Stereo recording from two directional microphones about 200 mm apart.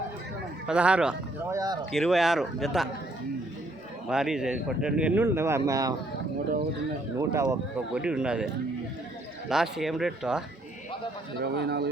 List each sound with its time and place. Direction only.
0.7 s speech: 5° right (ahead or behind)
1.9 s speech: centre (ahead or behind)
4.1 s speech: centre (ahead or behind)
7.2 s speech: 15° right (ahead or behind)
9.5 s speech: centre (ahead or behind)
11.3 s speech: 55° right (ahead or behind)